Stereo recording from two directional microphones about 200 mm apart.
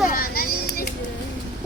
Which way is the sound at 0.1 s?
45° left (ahead or behind).